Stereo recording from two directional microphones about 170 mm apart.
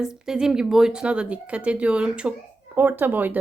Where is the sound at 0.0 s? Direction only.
5° right (ahead or behind).